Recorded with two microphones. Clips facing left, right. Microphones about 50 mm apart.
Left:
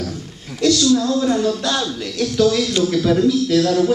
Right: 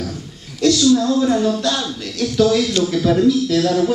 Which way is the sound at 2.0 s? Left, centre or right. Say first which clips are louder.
Left 2 dB; centre.